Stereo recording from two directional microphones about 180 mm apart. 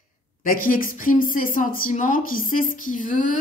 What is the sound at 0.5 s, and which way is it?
Speech, 50° left (ahead or behind).